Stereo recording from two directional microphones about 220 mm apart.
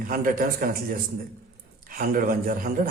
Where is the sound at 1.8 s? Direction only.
40° right (ahead or behind).